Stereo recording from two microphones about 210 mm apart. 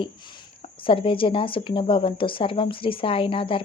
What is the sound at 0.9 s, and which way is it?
A woman's voice, 25° left (ahead or behind).